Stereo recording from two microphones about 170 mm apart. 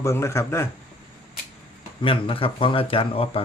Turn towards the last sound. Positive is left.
turn(degrees=35)  # may be behind; listen again after turning